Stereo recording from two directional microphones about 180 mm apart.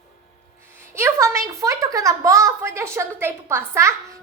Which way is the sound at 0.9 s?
15° right (ahead or behind).